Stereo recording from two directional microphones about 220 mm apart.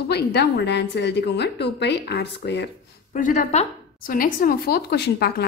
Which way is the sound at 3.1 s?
35° left (ahead or behind).